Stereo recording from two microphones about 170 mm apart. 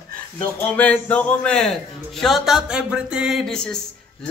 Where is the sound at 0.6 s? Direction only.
10° left (ahead or behind).